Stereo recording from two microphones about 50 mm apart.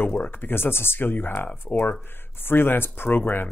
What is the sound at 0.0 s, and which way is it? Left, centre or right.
Speech, left.